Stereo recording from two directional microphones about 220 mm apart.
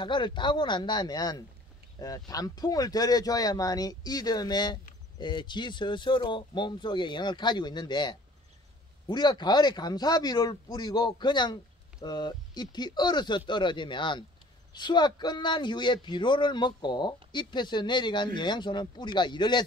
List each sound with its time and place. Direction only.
0.0 s speech: 20° left (ahead or behind)